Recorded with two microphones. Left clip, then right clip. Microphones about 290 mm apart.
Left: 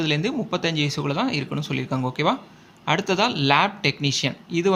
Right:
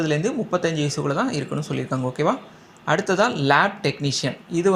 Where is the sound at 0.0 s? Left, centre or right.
Centre.